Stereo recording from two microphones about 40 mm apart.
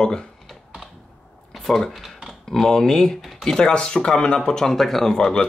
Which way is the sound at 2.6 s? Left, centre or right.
Centre.